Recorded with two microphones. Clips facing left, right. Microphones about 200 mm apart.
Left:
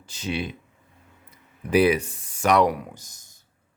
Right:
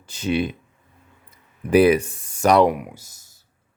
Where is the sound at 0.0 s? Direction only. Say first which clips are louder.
Right 7 dB; 55° right (ahead or behind).